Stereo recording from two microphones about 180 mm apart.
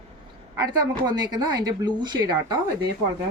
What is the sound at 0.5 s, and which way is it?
Speech, 20° right (ahead or behind).